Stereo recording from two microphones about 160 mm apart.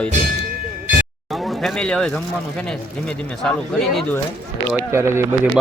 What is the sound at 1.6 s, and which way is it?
Speech, 5° left (ahead or behind).